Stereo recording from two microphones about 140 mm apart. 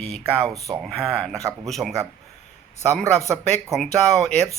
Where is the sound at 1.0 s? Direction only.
Centre (ahead or behind).